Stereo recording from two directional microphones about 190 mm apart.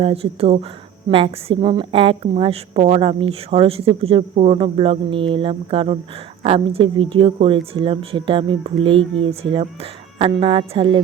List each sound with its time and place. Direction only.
0.0 s a woman's voice: 30° right (ahead or behind)